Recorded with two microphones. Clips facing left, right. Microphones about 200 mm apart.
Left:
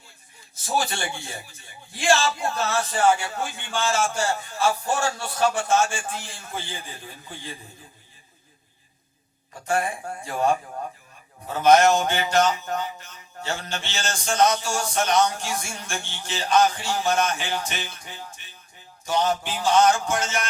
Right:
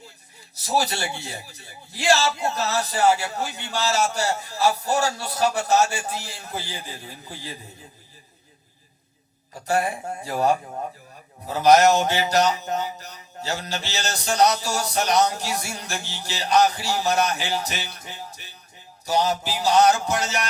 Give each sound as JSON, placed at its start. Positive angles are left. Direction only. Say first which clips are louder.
{"t": 0.6, "sound": "a man's voice", "louder": "right 2 dB", "side_deg": -40}
{"t": 2.3, "sound": "speech", "louder": "right 1 dB", "side_deg": -20}
{"t": 2.6, "sound": "a man's voice", "louder": "even", "side_deg": -40}
{"t": 9.6, "sound": "a man's voice", "louder": "right 2 dB", "side_deg": -40}
{"t": 10.0, "sound": "speech", "louder": "right 2 dB", "side_deg": -20}
{"t": 10.2, "sound": "a man's voice", "louder": "right 1 dB", "side_deg": -40}